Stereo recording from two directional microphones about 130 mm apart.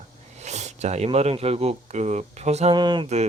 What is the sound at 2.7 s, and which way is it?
Mantra, 35° right (ahead or behind).